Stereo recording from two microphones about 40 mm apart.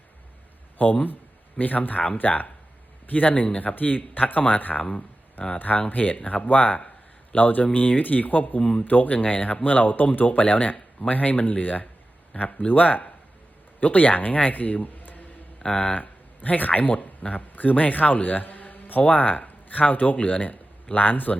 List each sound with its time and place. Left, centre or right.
0.8 s speech: left
4.9 s a sound: left
5.5 s speech: left
9.1 s a man's voice: left
15.6 s speech: left
16.0 s a man's voice: left